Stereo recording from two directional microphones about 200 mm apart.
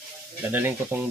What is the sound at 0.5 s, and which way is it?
Speech, 10° right (ahead or behind).